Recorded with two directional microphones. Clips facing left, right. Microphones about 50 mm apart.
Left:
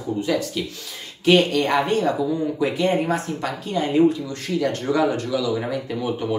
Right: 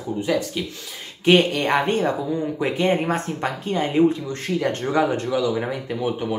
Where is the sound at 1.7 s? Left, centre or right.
Right.